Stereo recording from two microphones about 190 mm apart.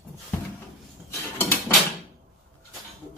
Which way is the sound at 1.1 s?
10° left (ahead or behind).